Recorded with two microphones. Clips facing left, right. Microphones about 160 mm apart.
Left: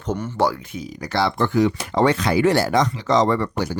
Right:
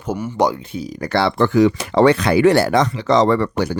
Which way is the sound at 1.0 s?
60° right (ahead or behind).